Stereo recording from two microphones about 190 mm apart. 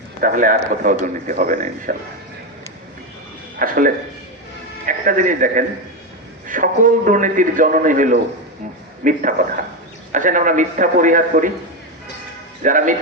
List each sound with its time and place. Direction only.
0.2 s a man's voice: 45° right (ahead or behind)
3.6 s a man's voice: 45° right (ahead or behind)
12.6 s a man's voice: 45° right (ahead or behind)